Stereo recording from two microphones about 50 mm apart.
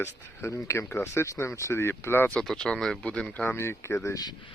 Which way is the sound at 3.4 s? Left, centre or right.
Left.